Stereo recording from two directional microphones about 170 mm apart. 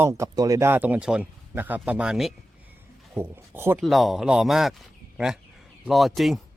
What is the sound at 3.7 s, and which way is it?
Speech, centre (ahead or behind).